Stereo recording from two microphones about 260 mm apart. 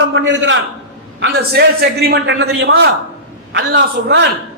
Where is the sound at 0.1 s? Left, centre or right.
Right.